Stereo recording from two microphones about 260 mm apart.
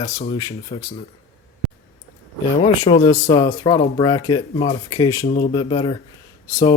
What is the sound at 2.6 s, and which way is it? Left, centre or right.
Speech, left.